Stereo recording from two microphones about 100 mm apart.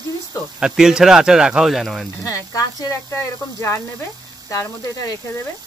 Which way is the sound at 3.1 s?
25° left (ahead or behind).